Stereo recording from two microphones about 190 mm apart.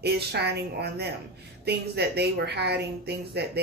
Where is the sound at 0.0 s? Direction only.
60° right (ahead or behind).